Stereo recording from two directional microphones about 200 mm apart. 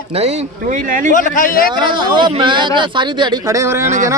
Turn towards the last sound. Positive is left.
turn(degrees=-15)  # may be behind; listen again after turning